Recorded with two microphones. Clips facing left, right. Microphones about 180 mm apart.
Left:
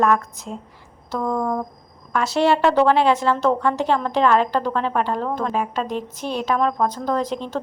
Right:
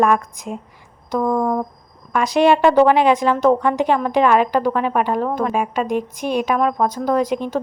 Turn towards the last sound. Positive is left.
turn(degrees=-10)  # may be behind; listen again after turning